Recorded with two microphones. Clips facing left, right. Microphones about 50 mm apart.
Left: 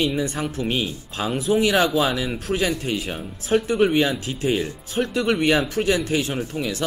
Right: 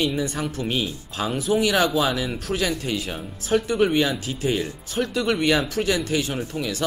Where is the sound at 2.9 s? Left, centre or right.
Centre.